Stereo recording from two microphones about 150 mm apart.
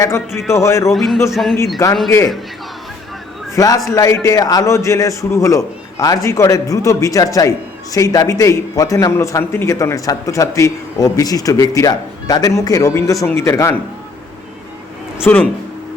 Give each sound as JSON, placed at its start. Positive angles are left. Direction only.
{"t": 0.3, "sound": "a man's voice", "side_deg": 20}
{"t": 0.9, "sound": "speech", "side_deg": 0}
{"t": 2.0, "sound": "a man's voice", "side_deg": 20}
{"t": 3.5, "sound": "a man's voice", "side_deg": 25}
{"t": 15.2, "sound": "speech", "side_deg": 10}